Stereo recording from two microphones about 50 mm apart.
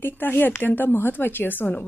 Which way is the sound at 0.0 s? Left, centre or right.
Left.